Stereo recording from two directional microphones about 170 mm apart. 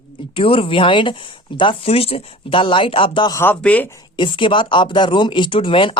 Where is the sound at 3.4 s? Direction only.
10° left (ahead or behind).